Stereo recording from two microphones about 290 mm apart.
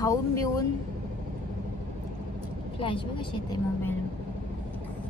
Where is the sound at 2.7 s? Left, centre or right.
Centre.